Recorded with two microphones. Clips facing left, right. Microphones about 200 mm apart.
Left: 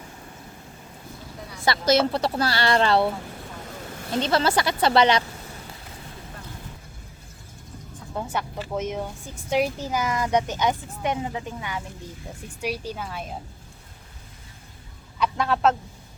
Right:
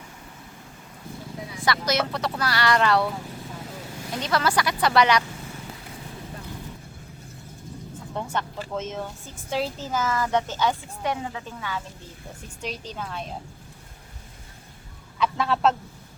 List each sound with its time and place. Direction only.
1.6 s speech: 30° left (ahead or behind)
4.1 s speech: 25° left (ahead or behind)
8.1 s vehicle: 10° left (ahead or behind)
8.7 s speech: 15° left (ahead or behind)
15.2 s speech: centre (ahead or behind)